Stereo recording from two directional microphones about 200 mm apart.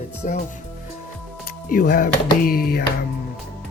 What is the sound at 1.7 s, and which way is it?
Speech, 45° left (ahead or behind).